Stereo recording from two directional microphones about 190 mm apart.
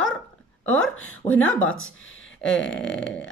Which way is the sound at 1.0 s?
10° left (ahead or behind).